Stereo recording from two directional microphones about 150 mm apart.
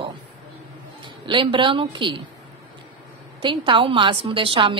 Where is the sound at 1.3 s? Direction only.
35° right (ahead or behind).